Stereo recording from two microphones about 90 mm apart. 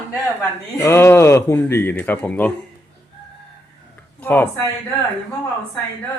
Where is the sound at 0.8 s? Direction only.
30° left (ahead or behind).